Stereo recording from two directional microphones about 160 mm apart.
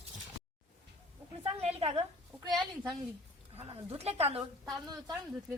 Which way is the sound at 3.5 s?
40° right (ahead or behind).